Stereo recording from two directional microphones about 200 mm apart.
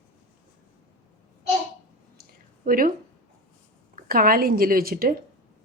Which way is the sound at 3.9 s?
45° right (ahead or behind).